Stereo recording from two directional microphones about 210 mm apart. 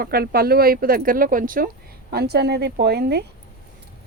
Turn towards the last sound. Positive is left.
turn(degrees=-50)  # may be behind; listen again after turning